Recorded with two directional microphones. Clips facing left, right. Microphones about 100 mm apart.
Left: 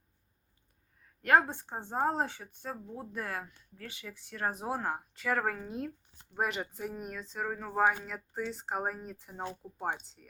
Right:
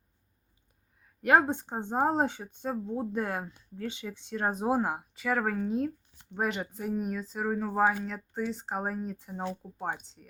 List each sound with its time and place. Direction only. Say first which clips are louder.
1.2 s speech: right 2 dB; 15° right (ahead or behind)